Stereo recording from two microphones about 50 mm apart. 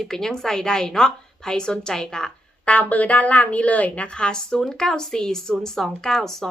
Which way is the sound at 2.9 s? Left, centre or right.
Left.